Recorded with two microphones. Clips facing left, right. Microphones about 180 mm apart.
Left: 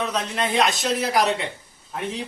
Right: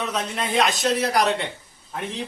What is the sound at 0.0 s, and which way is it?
A man's voice, centre (ahead or behind).